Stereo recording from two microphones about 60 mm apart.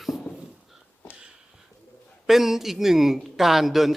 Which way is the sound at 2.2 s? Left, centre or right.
Centre.